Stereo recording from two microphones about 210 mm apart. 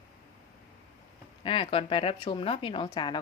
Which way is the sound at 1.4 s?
25° left (ahead or behind).